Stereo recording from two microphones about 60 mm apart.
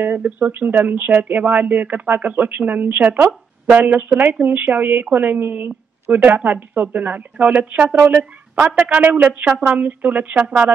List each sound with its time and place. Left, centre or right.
0.0 s speech: right